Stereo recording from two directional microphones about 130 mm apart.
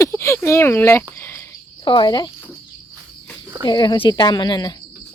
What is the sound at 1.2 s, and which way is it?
Cricket, 15° left (ahead or behind).